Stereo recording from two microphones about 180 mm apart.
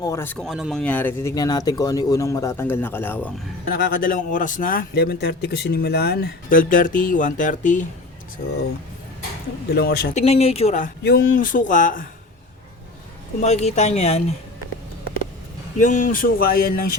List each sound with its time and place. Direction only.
0.0 s speech: 15° left (ahead or behind)
1.4 s speech: 20° left (ahead or behind)
3.7 s a man's voice: 55° left (ahead or behind)
9.7 s a man's voice: 60° left (ahead or behind)
10.2 s speech: 35° left (ahead or behind)
11.0 s a man's voice: 55° left (ahead or behind)
13.4 s speech: 40° left (ahead or behind)
15.9 s a man's voice: 50° left (ahead or behind)